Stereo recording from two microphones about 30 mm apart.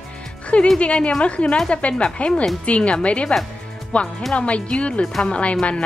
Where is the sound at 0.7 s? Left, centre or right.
Left.